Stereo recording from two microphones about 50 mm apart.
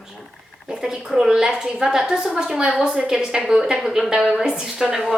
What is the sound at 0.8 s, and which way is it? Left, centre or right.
A woman's voice, centre.